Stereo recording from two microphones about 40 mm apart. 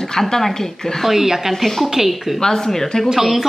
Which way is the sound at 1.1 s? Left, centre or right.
Centre.